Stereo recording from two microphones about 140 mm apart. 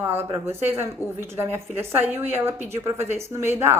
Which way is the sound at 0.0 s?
20° right (ahead or behind).